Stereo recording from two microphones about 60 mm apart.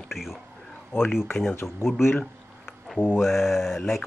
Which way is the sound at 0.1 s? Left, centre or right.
Centre.